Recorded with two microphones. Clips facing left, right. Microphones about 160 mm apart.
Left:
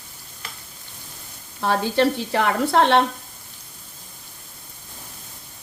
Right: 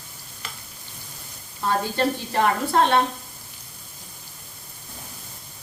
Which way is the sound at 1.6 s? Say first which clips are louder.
Left 3 dB; 75° left (ahead or behind).